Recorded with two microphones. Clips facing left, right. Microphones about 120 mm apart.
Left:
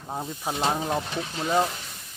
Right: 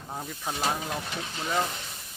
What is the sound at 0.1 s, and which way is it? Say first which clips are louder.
Speech: left 4 dB; 20° left (ahead or behind).